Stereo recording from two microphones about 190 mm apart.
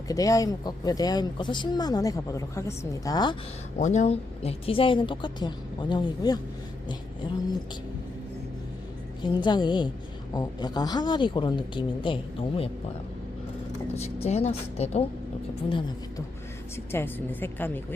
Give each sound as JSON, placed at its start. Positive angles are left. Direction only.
{"t": 0.1, "sound": "speech", "side_deg": 20}
{"t": 3.8, "sound": "speech", "side_deg": 40}
{"t": 9.2, "sound": "speech", "side_deg": 25}
{"t": 13.9, "sound": "a woman's voice", "side_deg": 35}
{"t": 16.7, "sound": "a woman's voice", "side_deg": 10}